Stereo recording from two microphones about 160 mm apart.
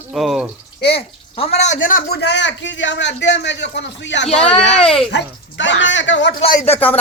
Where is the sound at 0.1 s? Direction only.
Centre (ahead or behind).